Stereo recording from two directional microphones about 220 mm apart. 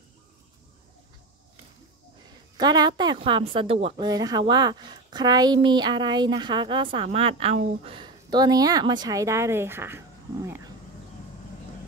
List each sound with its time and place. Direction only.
2.5 s a woman's voice: 20° right (ahead or behind)